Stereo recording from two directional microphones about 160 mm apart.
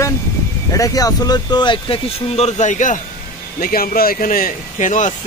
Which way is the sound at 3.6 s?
65° left (ahead or behind).